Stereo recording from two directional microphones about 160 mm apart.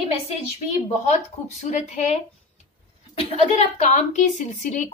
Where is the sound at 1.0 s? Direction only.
45° left (ahead or behind).